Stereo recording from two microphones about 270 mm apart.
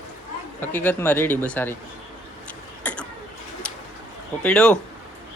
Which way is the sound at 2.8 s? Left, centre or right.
Centre.